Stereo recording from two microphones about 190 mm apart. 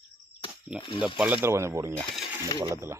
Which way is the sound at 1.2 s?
10° right (ahead or behind).